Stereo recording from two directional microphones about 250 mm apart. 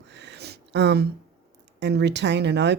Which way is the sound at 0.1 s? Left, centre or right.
Right.